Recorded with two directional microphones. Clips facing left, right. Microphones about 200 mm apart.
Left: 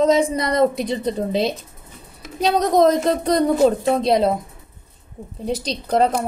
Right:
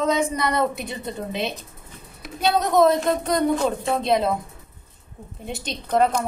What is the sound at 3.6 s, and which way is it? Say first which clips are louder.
Speech: left 5 dB; 35° left (ahead or behind).